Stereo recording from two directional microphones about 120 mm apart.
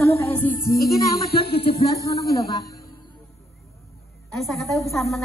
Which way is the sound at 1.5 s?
50° left (ahead or behind).